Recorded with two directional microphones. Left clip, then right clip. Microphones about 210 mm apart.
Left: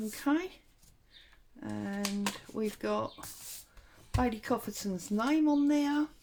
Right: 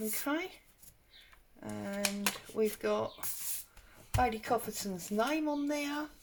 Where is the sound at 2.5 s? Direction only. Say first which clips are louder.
Right 2 dB; 35° left (ahead or behind).